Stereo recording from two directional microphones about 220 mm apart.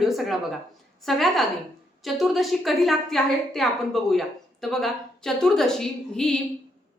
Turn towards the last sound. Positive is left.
turn(degrees=5)  # may be behind; listen again after turning